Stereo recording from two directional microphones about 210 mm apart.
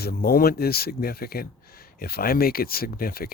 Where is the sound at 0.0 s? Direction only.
45° left (ahead or behind).